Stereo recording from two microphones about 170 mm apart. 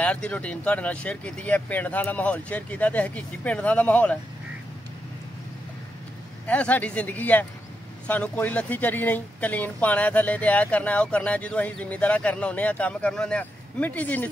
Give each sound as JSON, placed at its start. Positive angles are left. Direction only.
{"t": 0.0, "sound": "speech", "side_deg": 10}
{"t": 6.4, "sound": "speech", "side_deg": 10}